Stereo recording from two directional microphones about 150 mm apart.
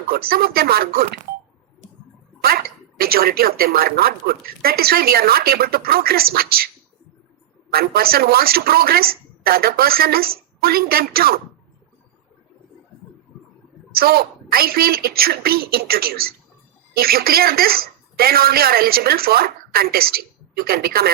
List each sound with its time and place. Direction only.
0.1 s speech: 90° right
1.8 s a sound: 50° right (ahead or behind)
2.4 s speech: 90° right
7.7 s speech: 90° right
13.9 s speech: 90° right